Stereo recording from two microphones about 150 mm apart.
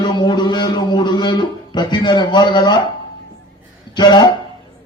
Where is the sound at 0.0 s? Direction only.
30° left (ahead or behind).